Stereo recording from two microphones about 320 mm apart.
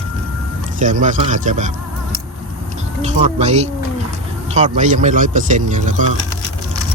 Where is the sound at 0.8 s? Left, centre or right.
Right.